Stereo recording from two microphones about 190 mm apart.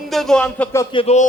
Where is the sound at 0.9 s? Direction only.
35° left (ahead or behind).